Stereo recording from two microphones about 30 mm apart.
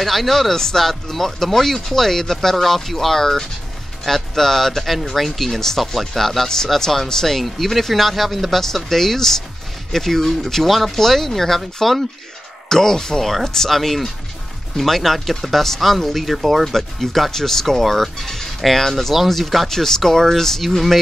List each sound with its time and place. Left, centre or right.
0.0 s speech: centre
7.4 s speech: centre
13.2 s speech: centre
13.7 s speech: centre
19.7 s speech: centre